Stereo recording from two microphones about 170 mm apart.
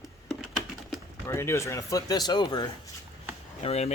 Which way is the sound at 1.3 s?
15° left (ahead or behind).